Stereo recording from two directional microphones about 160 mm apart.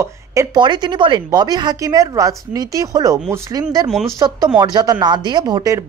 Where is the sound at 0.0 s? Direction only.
20° right (ahead or behind).